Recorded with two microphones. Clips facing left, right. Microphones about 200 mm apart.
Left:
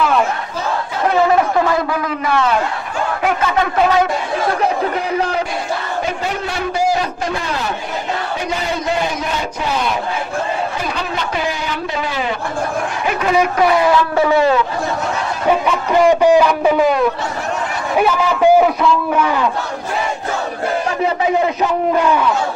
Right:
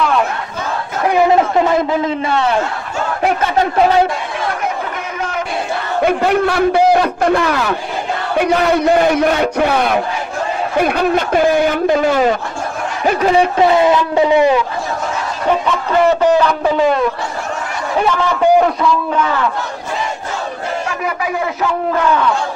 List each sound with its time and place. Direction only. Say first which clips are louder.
1.0 s a man's voice: right 2 dB; 15° right (ahead or behind)
4.6 s speech: left 4 dB; 35° left (ahead or behind)
6.0 s a man's voice: right 8 dB; 60° right (ahead or behind); by 14.6 s 15° right (ahead or behind)
15.6 s speech: left 1 dB; 15° left (ahead or behind)
21.0 s speech: left 4 dB; 25° left (ahead or behind)
21.9 s speech: even; 15° left (ahead or behind)